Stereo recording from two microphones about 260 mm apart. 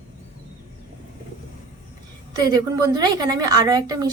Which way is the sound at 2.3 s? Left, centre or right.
Centre.